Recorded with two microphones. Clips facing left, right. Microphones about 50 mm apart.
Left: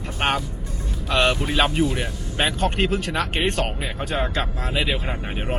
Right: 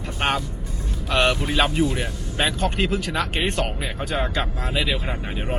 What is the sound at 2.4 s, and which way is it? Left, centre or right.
Speech, left.